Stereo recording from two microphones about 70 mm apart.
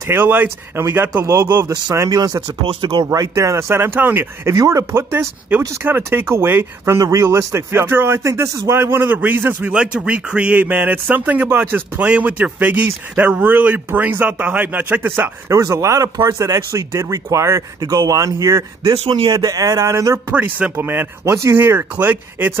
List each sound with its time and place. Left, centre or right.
0.1 s speech: right
2.0 s speech: right
3.1 s speech: right
4.5 s speech: right
5.9 s speech: right
7.0 s speech: right
7.2 s speech: right
9.7 s speech: centre
15.4 s speech: right
17.8 s speech: right
20.3 s speech: right
21.3 s speech: right
21.5 s speech: right